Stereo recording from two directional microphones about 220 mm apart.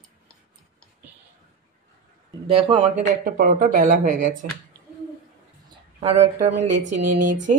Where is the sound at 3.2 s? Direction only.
40° right (ahead or behind).